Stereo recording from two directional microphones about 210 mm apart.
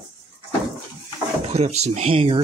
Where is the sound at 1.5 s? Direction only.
30° right (ahead or behind).